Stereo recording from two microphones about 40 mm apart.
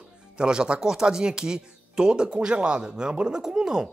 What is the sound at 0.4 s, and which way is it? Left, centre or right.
Speech, right.